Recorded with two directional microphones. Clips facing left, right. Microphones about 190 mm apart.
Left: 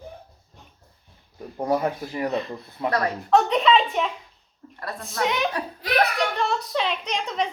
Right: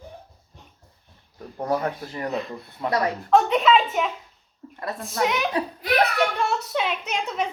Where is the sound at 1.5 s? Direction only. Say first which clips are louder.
Left 2 dB; 10° left (ahead or behind).